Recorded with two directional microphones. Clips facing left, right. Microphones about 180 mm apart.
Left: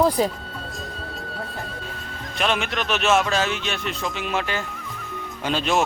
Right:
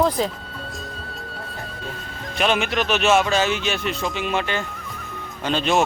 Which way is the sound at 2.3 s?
Centre (ahead or behind).